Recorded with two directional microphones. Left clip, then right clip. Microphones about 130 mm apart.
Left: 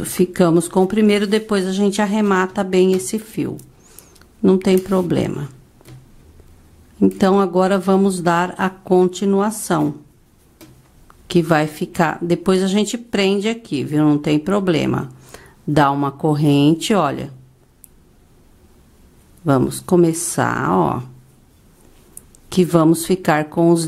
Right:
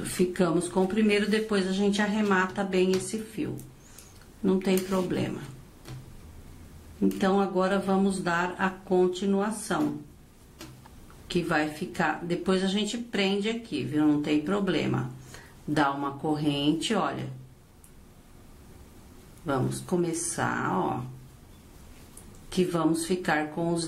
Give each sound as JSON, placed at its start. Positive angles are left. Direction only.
{"t": 0.3, "sound": "a woman's voice", "side_deg": 35}
{"t": 4.4, "sound": "a woman's voice", "side_deg": 35}
{"t": 7.0, "sound": "a woman's voice", "side_deg": 35}
{"t": 11.2, "sound": "a woman's voice", "side_deg": 35}
{"t": 19.4, "sound": "a woman's voice", "side_deg": 35}
{"t": 22.5, "sound": "a woman's voice", "side_deg": 35}